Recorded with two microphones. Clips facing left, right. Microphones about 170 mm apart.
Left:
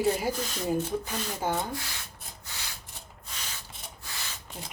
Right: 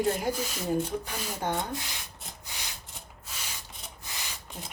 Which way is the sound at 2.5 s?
15° right (ahead or behind).